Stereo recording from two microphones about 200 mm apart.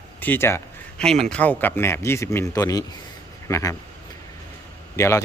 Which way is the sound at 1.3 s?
10° left (ahead or behind).